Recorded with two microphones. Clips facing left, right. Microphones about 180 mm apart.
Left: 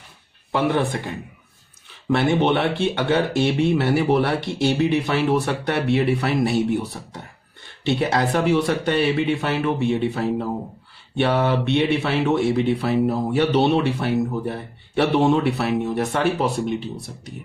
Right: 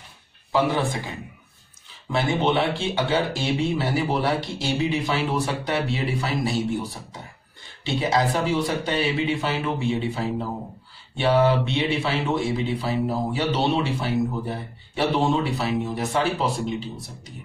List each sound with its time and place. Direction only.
0.5 s speech: 60° left (ahead or behind)